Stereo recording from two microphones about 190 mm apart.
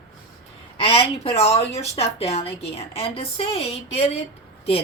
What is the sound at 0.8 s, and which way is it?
Speech, 30° left (ahead or behind).